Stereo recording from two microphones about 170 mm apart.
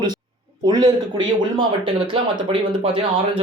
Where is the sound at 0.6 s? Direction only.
25° right (ahead or behind).